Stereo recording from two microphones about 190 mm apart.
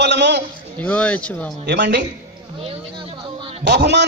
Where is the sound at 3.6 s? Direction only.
60° right (ahead or behind).